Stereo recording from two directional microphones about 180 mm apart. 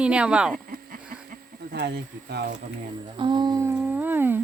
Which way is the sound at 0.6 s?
50° right (ahead or behind).